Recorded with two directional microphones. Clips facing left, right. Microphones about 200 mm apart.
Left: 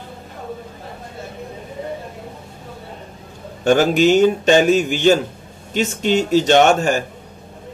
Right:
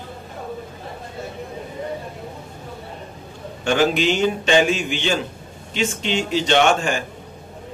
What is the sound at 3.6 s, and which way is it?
Speech, 45° left (ahead or behind).